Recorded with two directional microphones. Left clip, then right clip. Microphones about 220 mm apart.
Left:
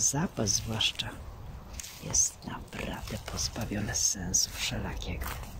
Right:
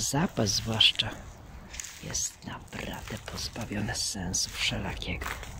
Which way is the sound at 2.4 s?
20° right (ahead or behind).